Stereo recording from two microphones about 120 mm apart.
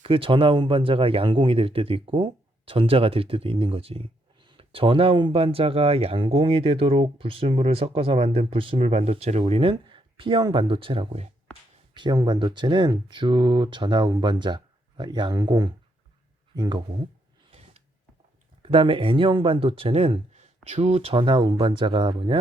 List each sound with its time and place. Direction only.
0.0 s speech: 45° right (ahead or behind)
18.6 s speech: 45° right (ahead or behind)